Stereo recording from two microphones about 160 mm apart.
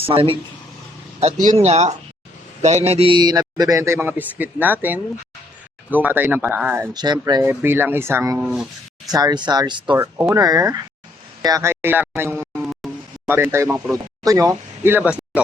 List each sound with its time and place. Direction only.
0.0 s speech: 35° right (ahead or behind)
1.2 s a man's voice: 45° right (ahead or behind); by 6.9 s 10° right (ahead or behind)
6.9 s a man's voice: 25° right (ahead or behind)
7.4 s speech: 15° right (ahead or behind)
9.0 s a man's voice: 25° right (ahead or behind)
9.9 s a man's voice: 10° right (ahead or behind)